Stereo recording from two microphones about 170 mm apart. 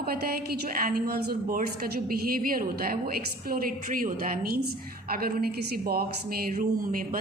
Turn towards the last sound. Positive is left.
turn(degrees=-50)  # may be behind; listen again after turning